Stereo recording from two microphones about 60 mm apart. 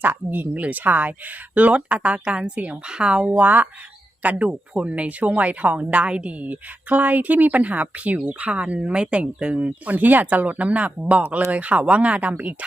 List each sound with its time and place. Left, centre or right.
0.0 s speech: right